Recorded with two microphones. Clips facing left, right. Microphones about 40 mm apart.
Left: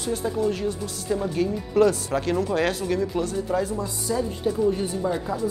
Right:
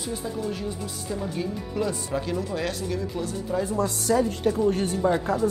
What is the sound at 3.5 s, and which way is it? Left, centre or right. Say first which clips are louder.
Speech: left 2 dB; left.